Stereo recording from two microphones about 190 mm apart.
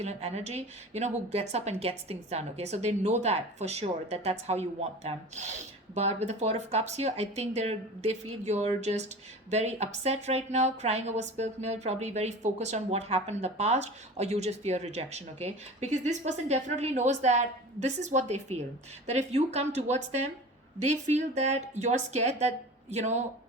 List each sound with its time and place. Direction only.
0.0 s a woman's voice: 35° right (ahead or behind)